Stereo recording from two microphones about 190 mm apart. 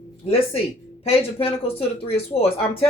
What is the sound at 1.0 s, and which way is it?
Speech, 30° left (ahead or behind).